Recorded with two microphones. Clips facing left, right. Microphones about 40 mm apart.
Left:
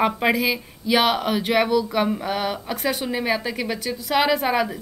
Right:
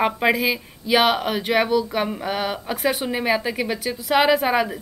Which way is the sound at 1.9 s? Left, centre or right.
Centre.